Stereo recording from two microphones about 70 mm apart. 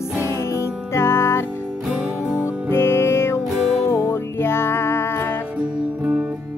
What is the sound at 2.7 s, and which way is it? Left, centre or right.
Music, left.